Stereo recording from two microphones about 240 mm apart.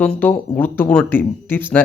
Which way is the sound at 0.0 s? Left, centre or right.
Centre.